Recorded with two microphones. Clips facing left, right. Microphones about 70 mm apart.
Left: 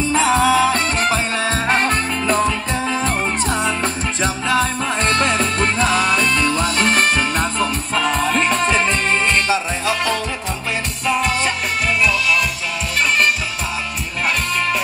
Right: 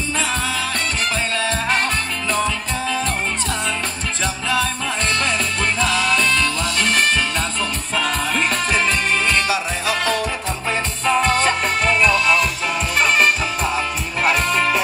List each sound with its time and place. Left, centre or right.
0.5 s music: centre
1.7 s music: left
4.2 s music: left
6.3 s music: left
7.9 s music: centre
8.8 s music: left
11.1 s music: centre
14.2 s music: centre